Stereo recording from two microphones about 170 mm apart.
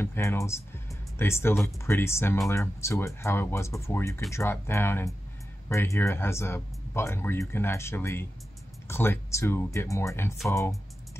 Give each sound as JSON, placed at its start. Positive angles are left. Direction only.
{"t": 0.0, "sound": "speech", "side_deg": 15}